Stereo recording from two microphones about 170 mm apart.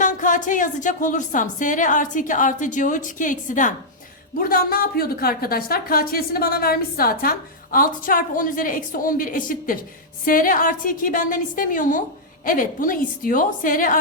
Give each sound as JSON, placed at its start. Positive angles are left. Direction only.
{"t": 0.0, "sound": "a woman's voice", "side_deg": 50}